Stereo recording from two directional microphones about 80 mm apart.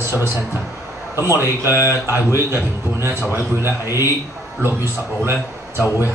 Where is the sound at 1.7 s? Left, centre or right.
Left.